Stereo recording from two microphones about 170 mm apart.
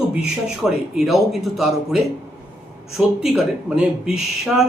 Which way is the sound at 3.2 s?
5° right (ahead or behind).